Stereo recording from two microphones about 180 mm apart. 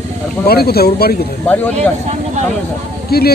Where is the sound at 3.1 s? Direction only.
60° left (ahead or behind).